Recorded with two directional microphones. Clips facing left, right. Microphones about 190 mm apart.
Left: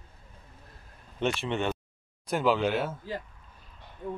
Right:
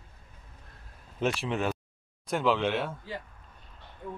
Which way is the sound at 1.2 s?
Centre (ahead or behind).